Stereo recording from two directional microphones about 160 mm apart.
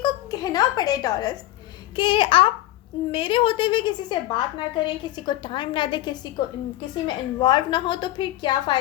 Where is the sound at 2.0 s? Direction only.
30° left (ahead or behind).